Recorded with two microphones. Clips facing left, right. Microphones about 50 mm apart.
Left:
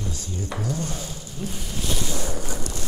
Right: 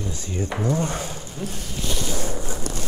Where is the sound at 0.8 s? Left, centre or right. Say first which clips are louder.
Right 5 dB; right.